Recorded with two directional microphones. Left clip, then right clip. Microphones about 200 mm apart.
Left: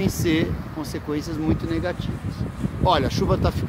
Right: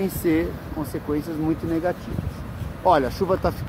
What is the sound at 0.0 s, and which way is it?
Speech, 10° left (ahead or behind).